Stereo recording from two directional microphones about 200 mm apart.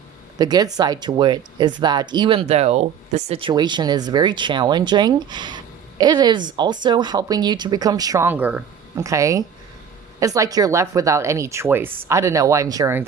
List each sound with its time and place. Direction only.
0.3 s speech: 20° right (ahead or behind)